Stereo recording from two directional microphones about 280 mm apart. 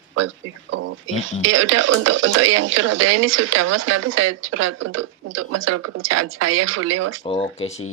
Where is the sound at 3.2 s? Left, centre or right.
Right.